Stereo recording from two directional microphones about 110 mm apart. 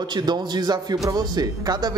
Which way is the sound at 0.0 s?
40° right (ahead or behind).